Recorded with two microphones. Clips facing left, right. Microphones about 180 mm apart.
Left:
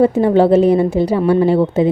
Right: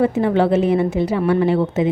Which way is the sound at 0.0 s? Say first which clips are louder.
Left 5 dB; 35° left (ahead or behind).